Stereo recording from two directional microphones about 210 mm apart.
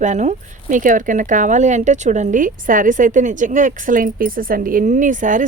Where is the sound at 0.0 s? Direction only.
35° right (ahead or behind).